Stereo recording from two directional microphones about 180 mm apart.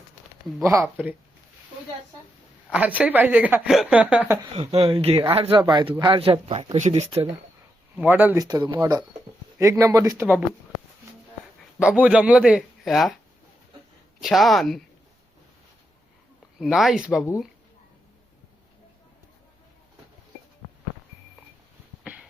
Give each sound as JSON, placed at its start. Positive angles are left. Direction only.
{"t": 0.6, "sound": "a woman's voice", "side_deg": -15}
{"t": 2.6, "sound": "a woman's voice", "side_deg": -10}
{"t": 4.5, "sound": "speech", "side_deg": -35}
{"t": 7.9, "sound": "a woman's voice", "side_deg": -10}
{"t": 8.4, "sound": "a woman's voice", "side_deg": -25}
{"t": 11.8, "sound": "a man's voice", "side_deg": -5}
{"t": 14.2, "sound": "a man's voice", "side_deg": 0}
{"t": 16.6, "sound": "a man's voice", "side_deg": 0}
{"t": 22.0, "sound": "a sound", "side_deg": -5}